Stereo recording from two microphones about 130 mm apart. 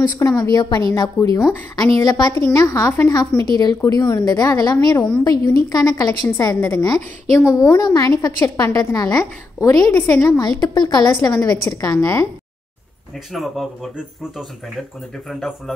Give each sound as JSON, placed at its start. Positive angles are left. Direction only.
{"t": 0.4, "sound": "a woman's voice", "side_deg": 30}
{"t": 13.3, "sound": "speech", "side_deg": 0}